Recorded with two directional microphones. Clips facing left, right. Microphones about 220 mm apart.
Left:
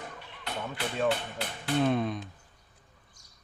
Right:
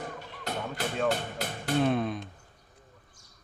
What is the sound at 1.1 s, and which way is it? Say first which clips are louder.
Music: right 1 dB; 45° right (ahead or behind).